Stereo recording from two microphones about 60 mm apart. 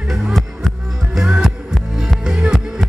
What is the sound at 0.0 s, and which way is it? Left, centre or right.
Music, centre.